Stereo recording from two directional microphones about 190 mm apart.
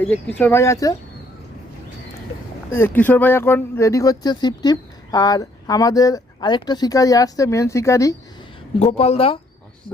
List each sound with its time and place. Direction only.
0.0 s speech: 10° left (ahead or behind)
2.7 s speech: 10° left (ahead or behind)
8.8 s speech: 35° left (ahead or behind)